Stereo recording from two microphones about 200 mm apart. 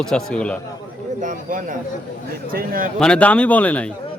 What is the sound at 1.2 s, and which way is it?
A man's voice, 40° right (ahead or behind).